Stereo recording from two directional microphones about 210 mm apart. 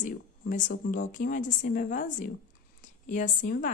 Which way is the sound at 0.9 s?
40° left (ahead or behind).